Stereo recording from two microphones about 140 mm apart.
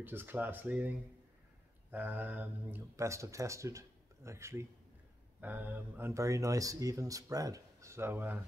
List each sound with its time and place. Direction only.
0.0 s speech: 15° right (ahead or behind)